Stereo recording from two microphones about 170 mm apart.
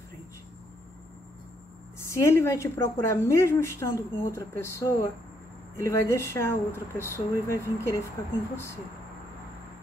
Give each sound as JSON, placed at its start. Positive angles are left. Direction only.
{"t": 2.0, "sound": "a woman's voice", "side_deg": 15}